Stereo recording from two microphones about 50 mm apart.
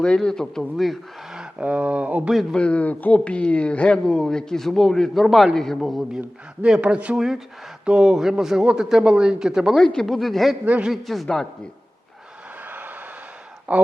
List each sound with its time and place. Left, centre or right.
0.2 s a man's voice: centre
1.3 s a sound: centre
1.6 s speech: right
2.3 s speech: centre
2.6 s speech: left
4.0 s a man's voice: centre
6.1 s speech: centre
7.2 s a man's voice: centre
9.7 s a man's voice: centre
10.1 s speech: centre
13.7 s speech: right